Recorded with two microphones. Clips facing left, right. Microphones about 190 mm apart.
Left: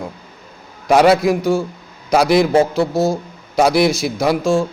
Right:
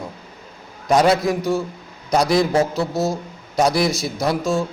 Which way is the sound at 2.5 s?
30° left (ahead or behind).